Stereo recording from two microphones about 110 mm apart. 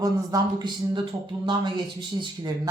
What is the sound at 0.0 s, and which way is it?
Speech, 35° right (ahead or behind).